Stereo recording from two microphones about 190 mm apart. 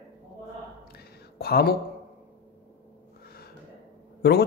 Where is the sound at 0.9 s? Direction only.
55° left (ahead or behind).